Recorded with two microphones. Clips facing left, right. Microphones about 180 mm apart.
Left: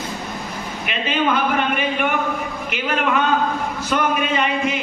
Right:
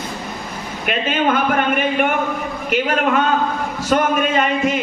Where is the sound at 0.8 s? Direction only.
50° right (ahead or behind).